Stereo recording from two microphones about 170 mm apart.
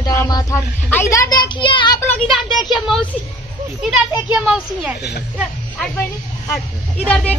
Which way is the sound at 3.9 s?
5° right (ahead or behind).